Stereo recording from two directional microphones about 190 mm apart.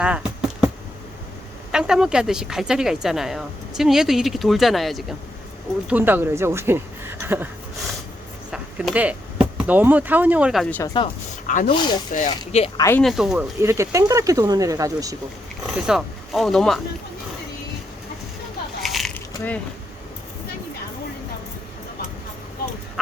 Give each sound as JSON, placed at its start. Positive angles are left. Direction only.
{"t": 0.0, "sound": "a sound", "side_deg": -5}
{"t": 1.7, "sound": "speech", "side_deg": -5}
{"t": 8.4, "sound": "speech", "side_deg": 0}
{"t": 10.7, "sound": "speech", "side_deg": 10}
{"t": 11.4, "sound": "speech", "side_deg": 45}
{"t": 11.7, "sound": "speech", "side_deg": 25}
{"t": 12.1, "sound": "speech", "side_deg": 40}
{"t": 13.0, "sound": "speech", "side_deg": 0}
{"t": 13.6, "sound": "speech", "side_deg": -15}
{"t": 15.7, "sound": "speech", "side_deg": 0}
{"t": 18.8, "sound": "a sound", "side_deg": 0}